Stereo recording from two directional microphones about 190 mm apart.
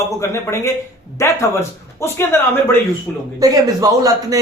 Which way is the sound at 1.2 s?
15° left (ahead or behind).